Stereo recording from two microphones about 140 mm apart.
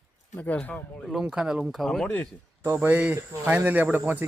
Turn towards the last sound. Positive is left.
turn(degrees=-15)  # may be behind; listen again after turning